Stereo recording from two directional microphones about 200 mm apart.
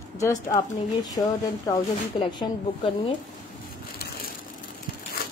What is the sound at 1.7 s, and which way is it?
Speech, 25° left (ahead or behind).